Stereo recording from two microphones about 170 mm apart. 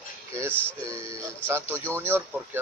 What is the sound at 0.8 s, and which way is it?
A man's voice, 15° right (ahead or behind).